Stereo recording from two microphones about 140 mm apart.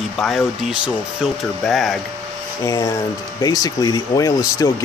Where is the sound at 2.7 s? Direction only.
30° left (ahead or behind).